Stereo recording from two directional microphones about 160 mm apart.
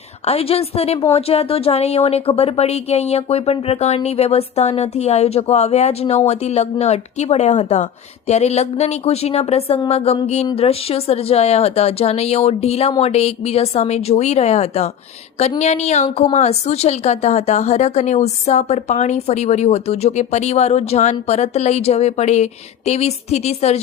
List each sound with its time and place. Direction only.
0.3 s a woman's voice: 40° left (ahead or behind)